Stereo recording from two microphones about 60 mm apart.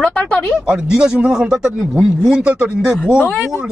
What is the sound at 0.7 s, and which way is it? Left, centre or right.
Speech, centre.